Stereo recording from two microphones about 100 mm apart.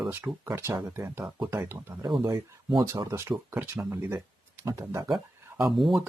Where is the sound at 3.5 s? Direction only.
20° right (ahead or behind).